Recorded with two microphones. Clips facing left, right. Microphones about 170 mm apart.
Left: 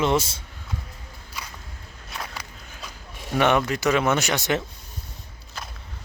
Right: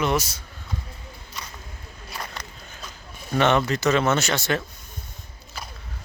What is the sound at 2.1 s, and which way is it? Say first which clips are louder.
Walk: even; 5° left (ahead or behind).